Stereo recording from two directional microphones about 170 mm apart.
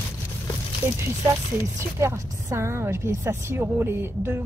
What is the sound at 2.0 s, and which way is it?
A woman's voice, 15° right (ahead or behind).